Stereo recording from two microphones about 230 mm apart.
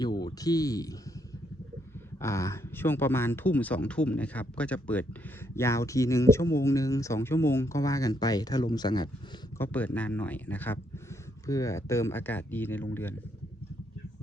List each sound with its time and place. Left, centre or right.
0.0 s speech: centre
2.2 s speech: centre
9.6 s speech: centre